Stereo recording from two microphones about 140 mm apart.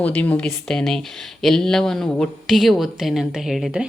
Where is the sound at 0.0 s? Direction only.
10° left (ahead or behind).